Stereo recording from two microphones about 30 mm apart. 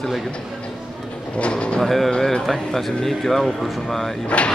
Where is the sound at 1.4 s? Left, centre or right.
Left.